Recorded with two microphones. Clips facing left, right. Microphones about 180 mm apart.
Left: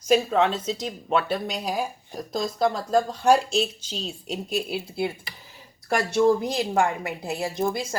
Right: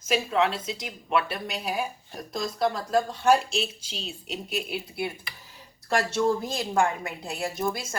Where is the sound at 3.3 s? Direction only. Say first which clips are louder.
Left 3 dB; 40° left (ahead or behind).